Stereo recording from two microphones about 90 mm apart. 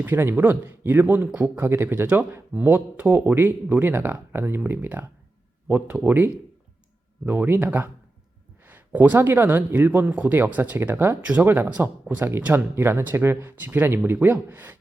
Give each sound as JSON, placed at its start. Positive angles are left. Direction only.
{"t": 0.0, "sound": "speech", "side_deg": -25}
{"t": 12.7, "sound": "speech", "side_deg": -25}